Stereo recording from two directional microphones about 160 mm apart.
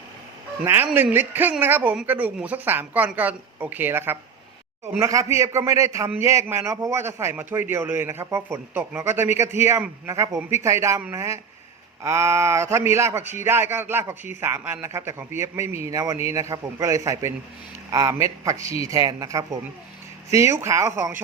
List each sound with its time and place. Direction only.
0.6 s a man's voice: 15° right (ahead or behind)